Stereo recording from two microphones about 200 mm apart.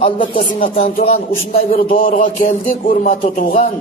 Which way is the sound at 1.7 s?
45° left (ahead or behind).